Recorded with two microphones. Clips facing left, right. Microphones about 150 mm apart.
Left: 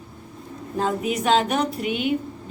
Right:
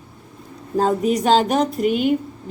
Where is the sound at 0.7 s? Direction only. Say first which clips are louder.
Right 6 dB; 40° right (ahead or behind).